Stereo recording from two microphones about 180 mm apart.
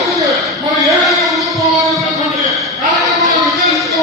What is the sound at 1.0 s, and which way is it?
Music, centre (ahead or behind).